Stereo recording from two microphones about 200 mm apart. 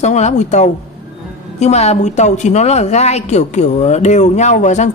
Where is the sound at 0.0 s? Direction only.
35° left (ahead or behind).